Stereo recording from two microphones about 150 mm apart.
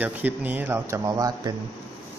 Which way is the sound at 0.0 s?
10° right (ahead or behind).